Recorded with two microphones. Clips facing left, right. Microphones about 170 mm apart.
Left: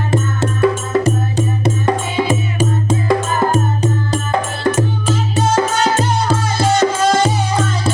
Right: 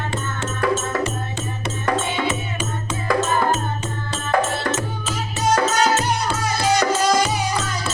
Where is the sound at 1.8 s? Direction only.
30° left (ahead or behind).